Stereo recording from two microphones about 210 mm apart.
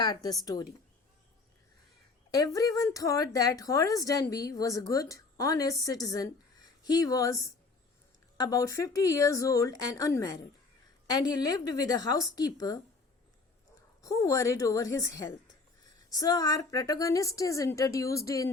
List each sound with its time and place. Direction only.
0.0 s a woman's voice: 20° left (ahead or behind)
2.3 s a woman's voice: 15° left (ahead or behind)
14.0 s a woman's voice: 15° left (ahead or behind)